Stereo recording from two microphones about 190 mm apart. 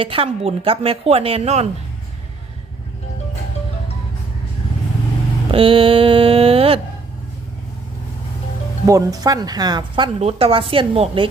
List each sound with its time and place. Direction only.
0.0 s a woman's voice: 30° right (ahead or behind)
5.5 s speech: 30° right (ahead or behind)
8.9 s speech: 15° right (ahead or behind)